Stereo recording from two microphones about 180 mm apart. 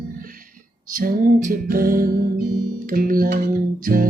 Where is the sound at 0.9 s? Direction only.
50° right (ahead or behind).